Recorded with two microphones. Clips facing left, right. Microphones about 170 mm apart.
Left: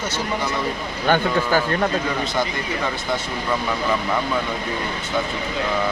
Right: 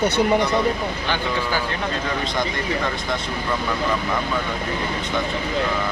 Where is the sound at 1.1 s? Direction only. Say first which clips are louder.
Left 9 dB; 50° left (ahead or behind).